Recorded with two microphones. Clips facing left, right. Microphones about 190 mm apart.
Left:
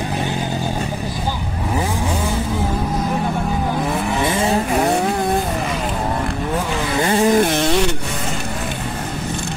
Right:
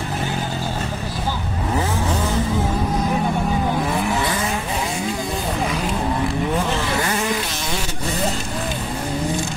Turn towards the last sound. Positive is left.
turn(degrees=65)  # may be behind; listen again after turning